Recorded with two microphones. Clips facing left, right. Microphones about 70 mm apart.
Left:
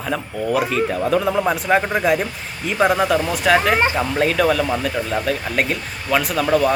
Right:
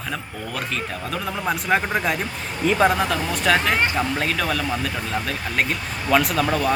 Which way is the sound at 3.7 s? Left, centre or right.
Centre.